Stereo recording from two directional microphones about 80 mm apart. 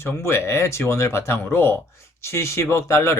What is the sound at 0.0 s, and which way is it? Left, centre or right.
Speech, left.